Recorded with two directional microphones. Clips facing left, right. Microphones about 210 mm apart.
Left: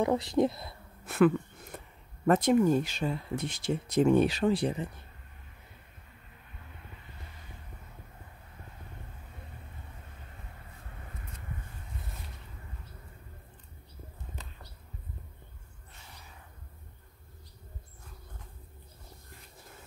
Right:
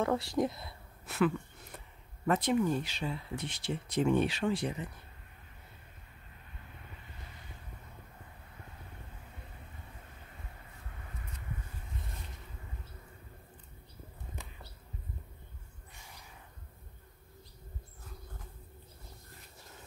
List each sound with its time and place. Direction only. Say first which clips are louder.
0.0 s speech: left 4 dB; 20° left (ahead or behind)
1.0 s a sound: left 6 dB; 50° left (ahead or behind)
2.2 s speech: left 5 dB; 45° left (ahead or behind)